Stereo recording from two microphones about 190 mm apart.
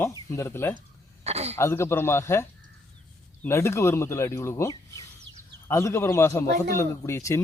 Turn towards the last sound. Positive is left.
turn(degrees=15)  # may be behind; listen again after turning